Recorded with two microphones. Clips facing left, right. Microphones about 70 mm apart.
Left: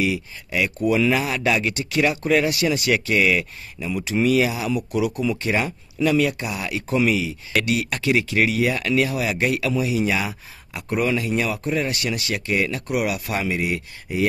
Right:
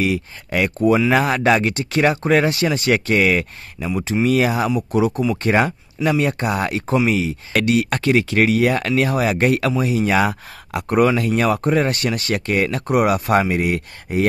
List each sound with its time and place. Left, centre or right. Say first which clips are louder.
0.0 s speech: right 3 dB; right
10.2 s speech: right 9 dB; right
11.1 s speech: right 5 dB; right